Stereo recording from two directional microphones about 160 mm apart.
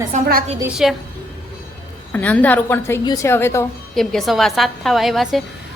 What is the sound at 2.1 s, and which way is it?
A woman's voice, 10° left (ahead or behind).